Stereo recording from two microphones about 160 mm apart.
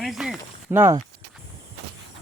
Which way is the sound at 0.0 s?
Centre (ahead or behind).